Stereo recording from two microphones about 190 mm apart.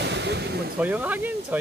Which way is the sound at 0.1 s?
65° right (ahead or behind).